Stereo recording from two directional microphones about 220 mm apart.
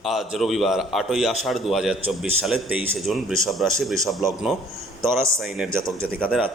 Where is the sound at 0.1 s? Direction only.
Centre (ahead or behind).